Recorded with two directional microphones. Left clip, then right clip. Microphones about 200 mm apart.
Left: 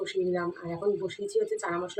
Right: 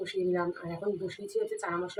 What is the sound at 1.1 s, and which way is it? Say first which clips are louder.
Speech: left 4 dB; 5° left (ahead or behind).